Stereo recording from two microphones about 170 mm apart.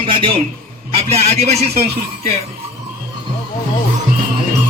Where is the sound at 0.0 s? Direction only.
30° right (ahead or behind).